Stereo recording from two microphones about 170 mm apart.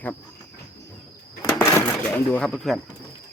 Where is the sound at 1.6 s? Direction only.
15° left (ahead or behind).